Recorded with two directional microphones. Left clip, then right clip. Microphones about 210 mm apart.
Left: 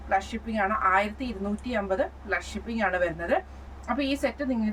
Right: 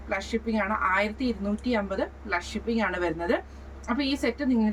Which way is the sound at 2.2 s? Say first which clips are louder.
Right 1 dB; 15° left (ahead or behind).